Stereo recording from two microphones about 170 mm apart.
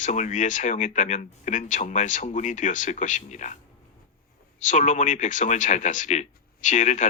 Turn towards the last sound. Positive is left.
turn(degrees=45)  # may be behind; listen again after turning